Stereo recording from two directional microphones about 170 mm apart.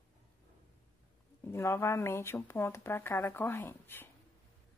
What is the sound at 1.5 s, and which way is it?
A woman's voice, 15° left (ahead or behind).